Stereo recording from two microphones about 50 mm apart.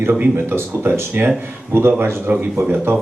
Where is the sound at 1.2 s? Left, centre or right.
Right.